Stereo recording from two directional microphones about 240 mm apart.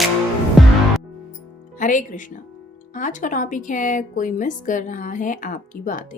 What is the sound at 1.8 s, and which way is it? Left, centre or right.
Speech, left.